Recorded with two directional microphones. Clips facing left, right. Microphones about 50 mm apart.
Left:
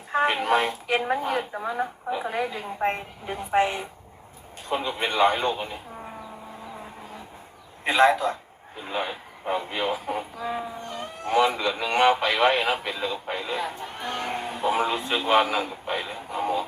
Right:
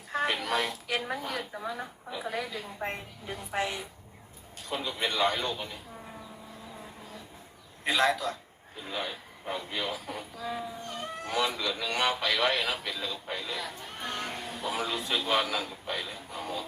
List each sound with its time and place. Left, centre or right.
0.1 s speech: left
6.7 s vehicle: left
7.9 s a man's voice: left